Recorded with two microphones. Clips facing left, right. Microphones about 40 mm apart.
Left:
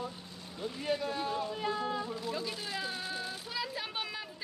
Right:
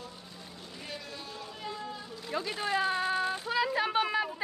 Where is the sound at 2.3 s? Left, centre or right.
Right.